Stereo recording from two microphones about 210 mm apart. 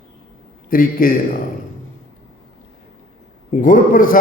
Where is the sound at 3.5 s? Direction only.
40° left (ahead or behind).